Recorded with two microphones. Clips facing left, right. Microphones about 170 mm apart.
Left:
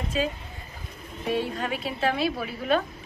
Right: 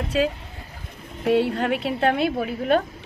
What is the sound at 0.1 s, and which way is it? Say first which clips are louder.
A woman's voice: right 6 dB; 75° right (ahead or behind).